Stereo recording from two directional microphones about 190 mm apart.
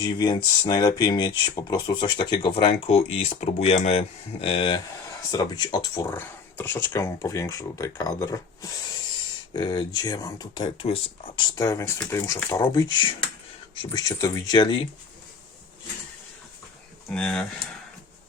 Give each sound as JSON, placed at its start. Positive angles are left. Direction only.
{"t": 0.0, "sound": "speech", "side_deg": 20}
{"t": 17.2, "sound": "speech", "side_deg": 5}